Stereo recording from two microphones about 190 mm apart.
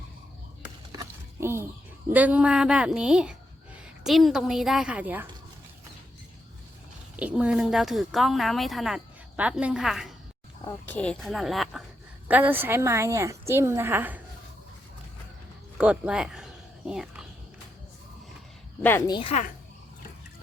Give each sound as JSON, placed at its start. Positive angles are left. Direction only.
{"t": 0.9, "sound": "a child's voice", "side_deg": -15}
{"t": 7.2, "sound": "a woman's voice", "side_deg": -5}
{"t": 15.8, "sound": "speech", "side_deg": -5}
{"t": 18.8, "sound": "speech", "side_deg": 10}